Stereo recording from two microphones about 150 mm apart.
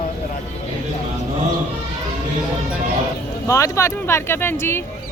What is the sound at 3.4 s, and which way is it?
Speech, 20° left (ahead or behind).